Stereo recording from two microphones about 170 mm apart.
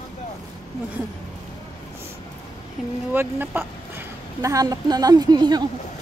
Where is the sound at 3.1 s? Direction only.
10° right (ahead or behind).